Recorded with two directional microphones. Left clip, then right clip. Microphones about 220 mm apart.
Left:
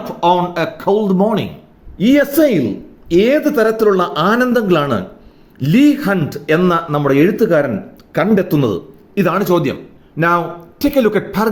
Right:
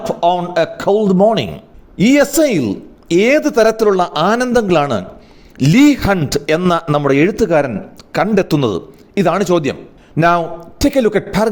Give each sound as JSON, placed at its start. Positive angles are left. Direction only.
{"t": 0.0, "sound": "a man's voice", "side_deg": -30}